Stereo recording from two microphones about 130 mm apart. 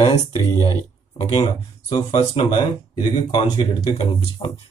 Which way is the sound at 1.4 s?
35° left (ahead or behind).